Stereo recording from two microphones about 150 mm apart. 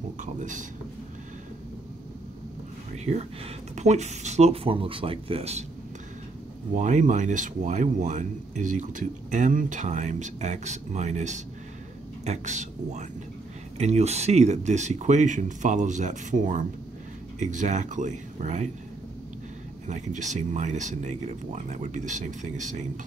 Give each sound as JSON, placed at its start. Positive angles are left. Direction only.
{"t": 0.2, "sound": "speech", "side_deg": -55}
{"t": 2.9, "sound": "speech", "side_deg": -50}
{"t": 6.7, "sound": "speech", "side_deg": -55}
{"t": 19.9, "sound": "speech", "side_deg": -55}